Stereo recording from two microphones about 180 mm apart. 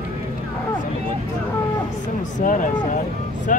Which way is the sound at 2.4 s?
45° left (ahead or behind).